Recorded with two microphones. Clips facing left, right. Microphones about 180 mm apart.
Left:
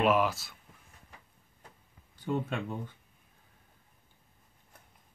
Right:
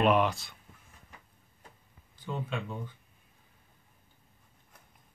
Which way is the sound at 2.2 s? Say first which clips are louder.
Left 4 dB; 50° left (ahead or behind).